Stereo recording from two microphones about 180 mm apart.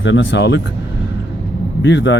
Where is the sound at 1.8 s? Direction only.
85° left.